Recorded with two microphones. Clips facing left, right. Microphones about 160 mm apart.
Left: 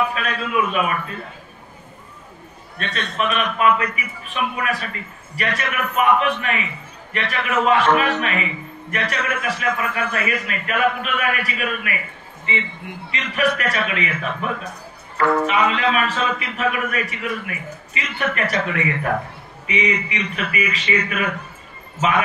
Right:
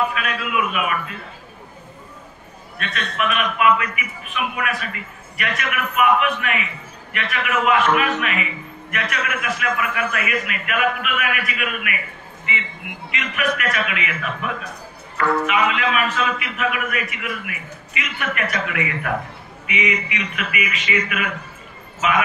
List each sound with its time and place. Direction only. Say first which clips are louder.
0.1 s a man's voice: left 1 dB; 35° left (ahead or behind)
2.8 s a man's voice: left 1 dB; 35° left (ahead or behind)